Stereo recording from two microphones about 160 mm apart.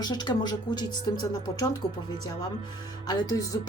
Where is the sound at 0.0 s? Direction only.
25° left (ahead or behind).